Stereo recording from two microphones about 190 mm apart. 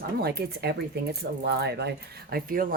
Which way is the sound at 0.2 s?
60° right (ahead or behind).